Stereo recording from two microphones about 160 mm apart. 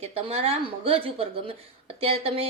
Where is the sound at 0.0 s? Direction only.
40° right (ahead or behind).